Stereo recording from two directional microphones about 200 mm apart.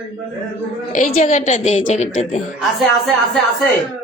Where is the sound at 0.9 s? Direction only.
40° left (ahead or behind).